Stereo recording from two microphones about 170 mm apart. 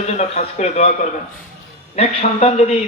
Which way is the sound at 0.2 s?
40° left (ahead or behind).